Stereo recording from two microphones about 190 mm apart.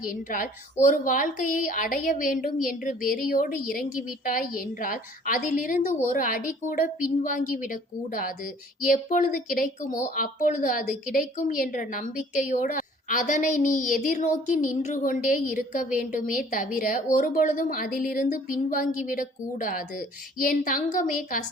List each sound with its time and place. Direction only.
0.0 s a woman's voice: 45° left (ahead or behind)
8.8 s a woman's voice: 45° left (ahead or behind)